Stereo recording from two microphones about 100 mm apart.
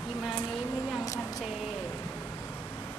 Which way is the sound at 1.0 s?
35° left (ahead or behind).